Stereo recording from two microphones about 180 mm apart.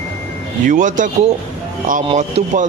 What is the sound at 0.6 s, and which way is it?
Speech, 45° right (ahead or behind).